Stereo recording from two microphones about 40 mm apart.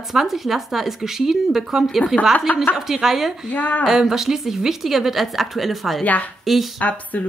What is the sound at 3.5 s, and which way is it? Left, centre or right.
Speech, left.